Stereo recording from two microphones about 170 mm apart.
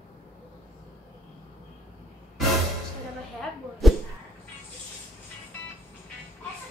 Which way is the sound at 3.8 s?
Centre (ahead or behind).